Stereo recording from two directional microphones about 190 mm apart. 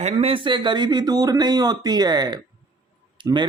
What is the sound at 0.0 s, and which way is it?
A man's voice, 30° right (ahead or behind).